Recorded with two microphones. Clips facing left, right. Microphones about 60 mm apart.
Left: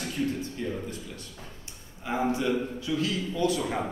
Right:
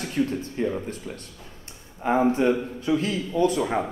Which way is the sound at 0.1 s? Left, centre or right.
Right.